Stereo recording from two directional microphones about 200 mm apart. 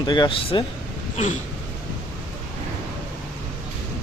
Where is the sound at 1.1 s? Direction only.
35° left (ahead or behind).